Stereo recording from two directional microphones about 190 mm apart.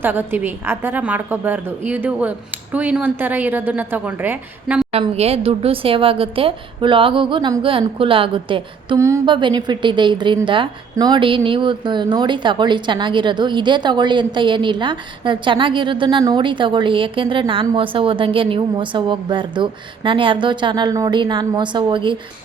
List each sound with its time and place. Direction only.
0.0 s a woman's voice: 10° right (ahead or behind)
4.9 s a woman's voice: 30° right (ahead or behind)
9.0 s a woman's voice: 15° right (ahead or behind)